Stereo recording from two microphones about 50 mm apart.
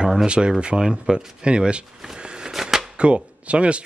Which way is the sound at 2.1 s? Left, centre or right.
Centre.